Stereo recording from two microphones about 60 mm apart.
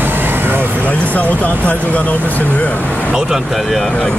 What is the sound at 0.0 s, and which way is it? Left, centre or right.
Vehicle, right.